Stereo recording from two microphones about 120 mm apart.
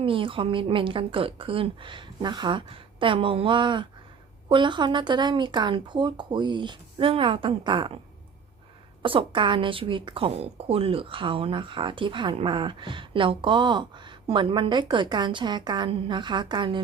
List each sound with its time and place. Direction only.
0.0 s a woman's voice: 45° right (ahead or behind)
9.0 s a woman's voice: 45° right (ahead or behind)